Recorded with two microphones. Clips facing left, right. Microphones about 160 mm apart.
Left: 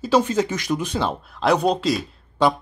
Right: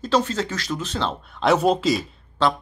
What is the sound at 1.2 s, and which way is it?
Speech, centre (ahead or behind).